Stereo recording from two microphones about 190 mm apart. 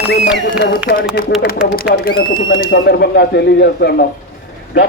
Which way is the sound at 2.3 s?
60° left (ahead or behind).